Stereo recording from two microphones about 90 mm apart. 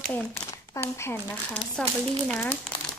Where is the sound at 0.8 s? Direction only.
25° left (ahead or behind).